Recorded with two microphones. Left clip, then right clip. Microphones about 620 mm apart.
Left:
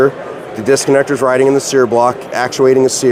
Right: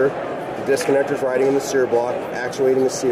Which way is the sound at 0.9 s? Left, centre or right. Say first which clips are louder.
Left 7 dB; left.